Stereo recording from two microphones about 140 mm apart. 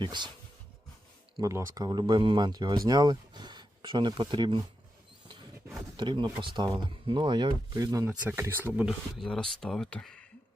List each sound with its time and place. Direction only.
0.0 s speech: 35° right (ahead or behind)
1.4 s speech: 20° right (ahead or behind)
6.0 s speech: 35° right (ahead or behind)
8.4 s speech: 15° right (ahead or behind); by 10.2 s 5° left (ahead or behind)